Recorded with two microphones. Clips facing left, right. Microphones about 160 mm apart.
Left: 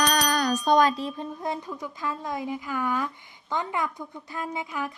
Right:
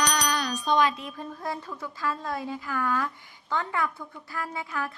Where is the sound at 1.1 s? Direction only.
20° left (ahead or behind).